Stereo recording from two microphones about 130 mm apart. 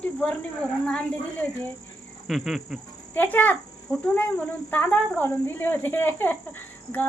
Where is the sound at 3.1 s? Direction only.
15° left (ahead or behind).